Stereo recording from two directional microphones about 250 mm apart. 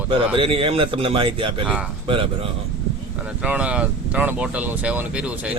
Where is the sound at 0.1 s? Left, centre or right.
Right.